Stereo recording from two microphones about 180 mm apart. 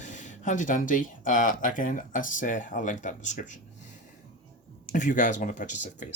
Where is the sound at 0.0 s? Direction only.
45° left (ahead or behind).